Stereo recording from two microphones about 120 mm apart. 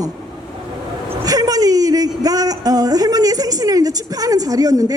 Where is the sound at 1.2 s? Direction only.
30° right (ahead or behind).